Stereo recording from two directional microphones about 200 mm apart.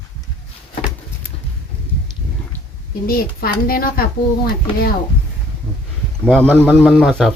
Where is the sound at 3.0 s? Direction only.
50° left (ahead or behind).